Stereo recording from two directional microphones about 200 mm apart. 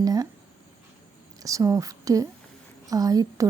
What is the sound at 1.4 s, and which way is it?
A woman's voice, 15° right (ahead or behind).